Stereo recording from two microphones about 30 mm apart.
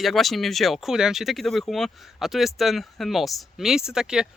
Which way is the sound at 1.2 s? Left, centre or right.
Centre.